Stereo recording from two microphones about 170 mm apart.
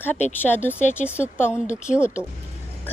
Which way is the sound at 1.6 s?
45° left (ahead or behind).